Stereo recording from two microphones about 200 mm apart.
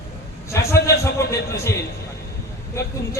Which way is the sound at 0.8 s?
15° left (ahead or behind).